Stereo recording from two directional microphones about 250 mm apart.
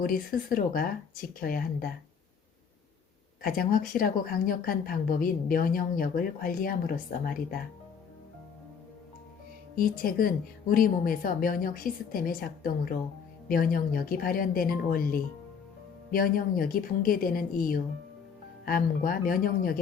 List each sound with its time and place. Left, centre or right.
0.0 s speech: left
3.4 s speech: left
9.7 s speech: left